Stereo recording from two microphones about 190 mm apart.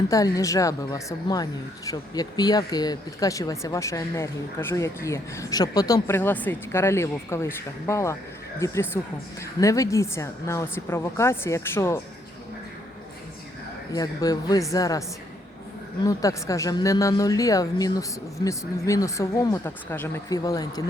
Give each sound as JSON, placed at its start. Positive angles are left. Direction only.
{"t": 0.1, "sound": "speech", "side_deg": 15}
{"t": 13.9, "sound": "speech", "side_deg": 20}
{"t": 16.0, "sound": "speech", "side_deg": 15}